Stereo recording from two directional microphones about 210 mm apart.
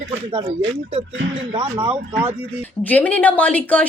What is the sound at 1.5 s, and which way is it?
Speech, 25° right (ahead or behind).